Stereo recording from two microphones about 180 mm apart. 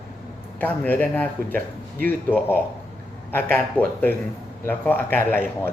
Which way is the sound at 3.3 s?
10° left (ahead or behind).